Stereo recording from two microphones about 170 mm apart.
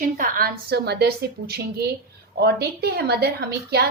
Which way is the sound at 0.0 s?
55° right (ahead or behind).